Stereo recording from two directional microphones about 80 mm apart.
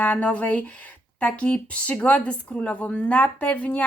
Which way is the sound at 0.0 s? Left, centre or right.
Centre.